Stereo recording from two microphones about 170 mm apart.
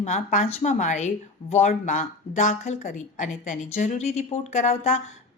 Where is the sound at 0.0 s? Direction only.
45° left (ahead or behind).